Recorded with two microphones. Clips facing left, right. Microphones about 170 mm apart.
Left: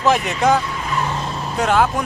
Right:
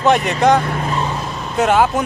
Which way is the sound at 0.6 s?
55° right (ahead or behind).